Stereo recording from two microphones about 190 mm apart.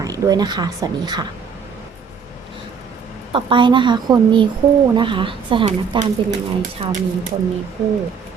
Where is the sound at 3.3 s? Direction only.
25° right (ahead or behind).